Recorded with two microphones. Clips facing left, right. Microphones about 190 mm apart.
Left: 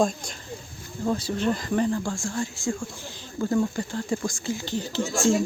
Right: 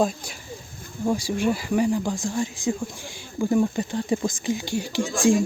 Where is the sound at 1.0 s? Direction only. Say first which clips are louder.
Right 2 dB; 10° right (ahead or behind).